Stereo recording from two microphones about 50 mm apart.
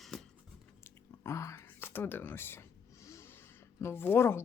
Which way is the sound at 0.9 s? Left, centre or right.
Left.